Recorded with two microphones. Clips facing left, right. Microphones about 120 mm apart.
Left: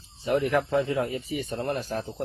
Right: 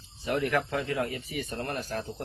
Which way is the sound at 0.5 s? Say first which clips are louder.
Left 4 dB; 25° left (ahead or behind).